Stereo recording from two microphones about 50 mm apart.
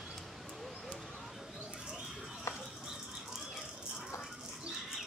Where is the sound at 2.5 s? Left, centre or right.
Left.